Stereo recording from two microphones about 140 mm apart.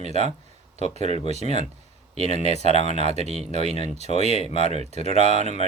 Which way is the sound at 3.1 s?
50° right (ahead or behind).